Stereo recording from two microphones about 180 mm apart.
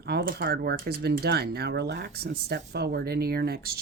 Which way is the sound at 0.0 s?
65° right (ahead or behind).